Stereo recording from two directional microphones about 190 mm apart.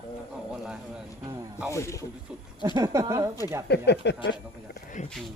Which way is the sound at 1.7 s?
15° left (ahead or behind).